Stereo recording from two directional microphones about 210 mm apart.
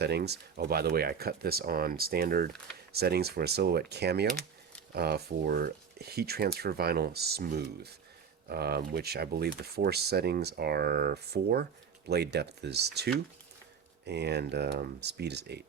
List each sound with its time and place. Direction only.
0.0 s speech: 50° right (ahead or behind)